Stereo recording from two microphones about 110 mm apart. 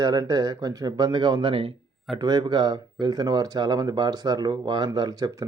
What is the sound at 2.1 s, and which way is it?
Speech, 35° right (ahead or behind).